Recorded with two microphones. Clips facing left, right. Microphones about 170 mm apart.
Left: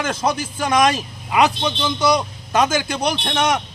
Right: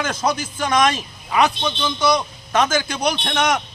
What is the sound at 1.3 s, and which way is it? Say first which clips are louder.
A man's voice: left 1 dB; 15° left (ahead or behind).